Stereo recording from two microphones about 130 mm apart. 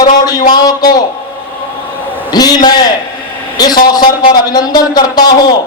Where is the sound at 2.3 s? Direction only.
30° left (ahead or behind).